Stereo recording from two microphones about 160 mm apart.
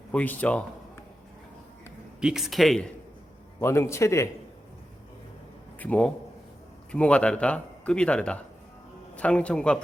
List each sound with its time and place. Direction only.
0.1 s a man's voice: 10° left (ahead or behind)
2.2 s speech: centre (ahead or behind)
3.6 s speech: 15° left (ahead or behind)
5.8 s speech: 10° left (ahead or behind)